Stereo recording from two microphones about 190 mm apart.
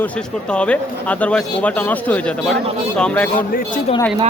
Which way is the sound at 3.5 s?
50° left (ahead or behind).